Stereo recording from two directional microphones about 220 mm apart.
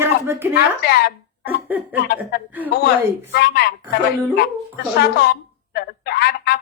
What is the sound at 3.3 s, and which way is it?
Speech, 45° left (ahead or behind).